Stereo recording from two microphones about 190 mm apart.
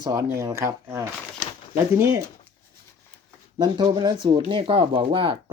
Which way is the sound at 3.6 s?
25° right (ahead or behind).